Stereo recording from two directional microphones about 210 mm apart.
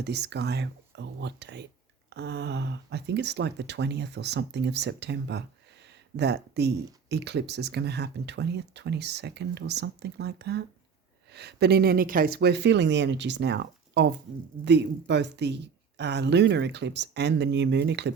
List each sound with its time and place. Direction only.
0.0 s speech: 55° right (ahead or behind)